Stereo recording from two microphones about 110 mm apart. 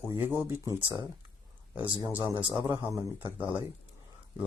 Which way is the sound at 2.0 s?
20° right (ahead or behind).